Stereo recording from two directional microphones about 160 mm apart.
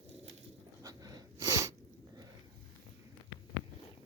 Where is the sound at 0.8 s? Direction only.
20° right (ahead or behind).